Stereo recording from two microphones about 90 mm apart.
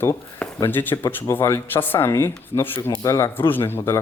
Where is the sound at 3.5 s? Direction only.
25° left (ahead or behind).